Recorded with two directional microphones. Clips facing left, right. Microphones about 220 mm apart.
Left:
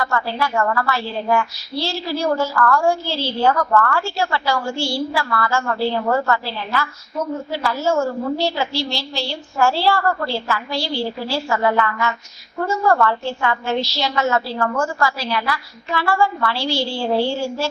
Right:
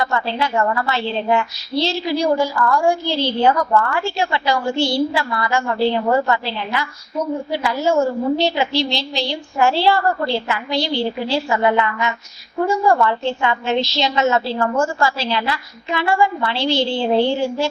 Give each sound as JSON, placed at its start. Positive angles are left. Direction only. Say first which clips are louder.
{"t": 0.0, "sound": "a woman's voice", "louder": "right 1 dB", "side_deg": -20}